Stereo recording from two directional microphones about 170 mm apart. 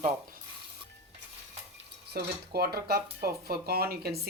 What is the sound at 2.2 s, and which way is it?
Speech, 65° right (ahead or behind).